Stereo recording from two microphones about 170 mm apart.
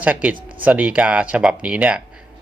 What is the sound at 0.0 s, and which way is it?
Speech, 10° right (ahead or behind).